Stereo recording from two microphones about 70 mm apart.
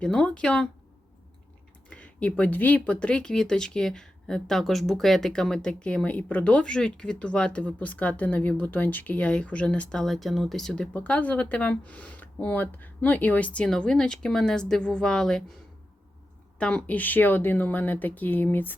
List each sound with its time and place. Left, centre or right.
0.0 s speech: centre
1.9 s speech: centre
10.9 s speech: left
16.6 s speech: centre